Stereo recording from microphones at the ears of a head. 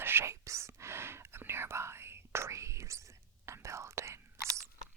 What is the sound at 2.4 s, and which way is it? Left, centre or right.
Whispering, right.